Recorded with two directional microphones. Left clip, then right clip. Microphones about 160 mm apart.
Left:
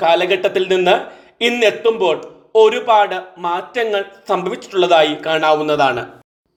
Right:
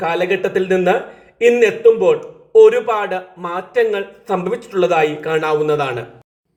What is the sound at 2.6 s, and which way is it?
A man's voice, 25° left (ahead or behind).